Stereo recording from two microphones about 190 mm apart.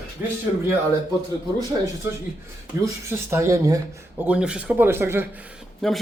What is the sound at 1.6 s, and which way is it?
Speech, 20° right (ahead or behind).